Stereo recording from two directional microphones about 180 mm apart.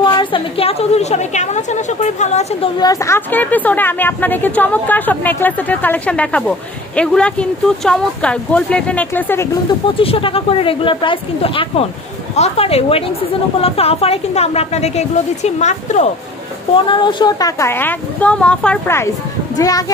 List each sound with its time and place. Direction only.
0.0 s a woman's voice: 25° left (ahead or behind)
2.8 s speech: 20° left (ahead or behind)
9.9 s a woman's voice: 30° left (ahead or behind)
16.7 s speech: 25° left (ahead or behind)